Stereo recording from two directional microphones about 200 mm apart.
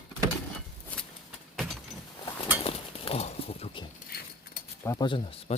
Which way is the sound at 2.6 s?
30° left (ahead or behind).